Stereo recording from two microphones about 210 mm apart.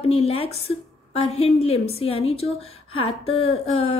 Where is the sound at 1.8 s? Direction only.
30° left (ahead or behind).